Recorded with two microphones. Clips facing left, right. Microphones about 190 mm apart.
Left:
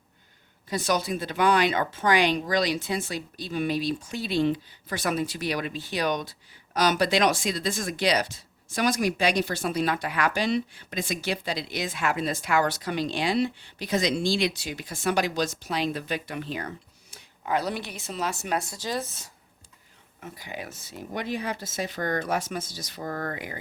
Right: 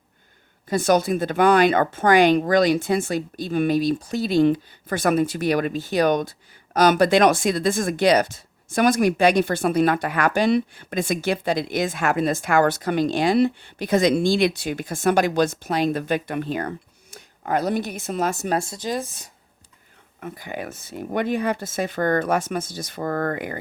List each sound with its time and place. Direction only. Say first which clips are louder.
0.7 s speech: right 7 dB; 50° right (ahead or behind)
18.6 s speech: right 4 dB; 20° right (ahead or behind)
20.1 s speech: right 6 dB; 55° right (ahead or behind)